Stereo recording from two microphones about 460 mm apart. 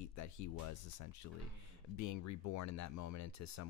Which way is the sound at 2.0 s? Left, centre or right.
Left.